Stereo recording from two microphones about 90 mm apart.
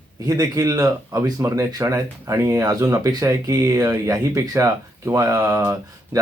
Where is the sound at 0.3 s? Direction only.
40° right (ahead or behind).